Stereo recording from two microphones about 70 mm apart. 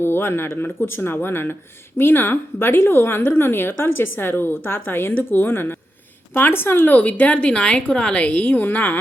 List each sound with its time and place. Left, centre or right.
0.0 s a woman's voice: left